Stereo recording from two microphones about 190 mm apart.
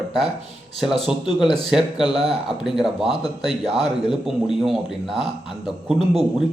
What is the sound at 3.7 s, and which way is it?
A man's voice, centre (ahead or behind).